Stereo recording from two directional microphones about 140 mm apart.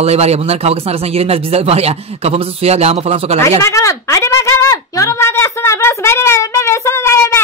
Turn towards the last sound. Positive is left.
turn(degrees=20)  # may be behind; listen again after turning